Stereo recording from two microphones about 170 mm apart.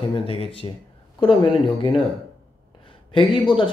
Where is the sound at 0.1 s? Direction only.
35° left (ahead or behind).